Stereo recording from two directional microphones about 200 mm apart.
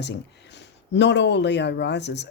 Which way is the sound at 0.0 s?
60° left (ahead or behind).